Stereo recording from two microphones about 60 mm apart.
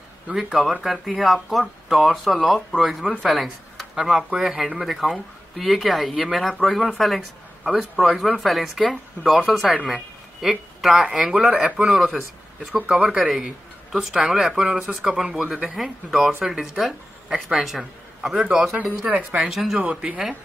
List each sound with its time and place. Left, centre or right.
0.3 s speech: centre
3.7 s a sound: centre
4.2 s speech: centre
14.0 s a woman's voice: centre
15.0 s a woman's voice: centre
19.0 s speech: right
19.5 s speech: centre
19.8 s a woman's voice: right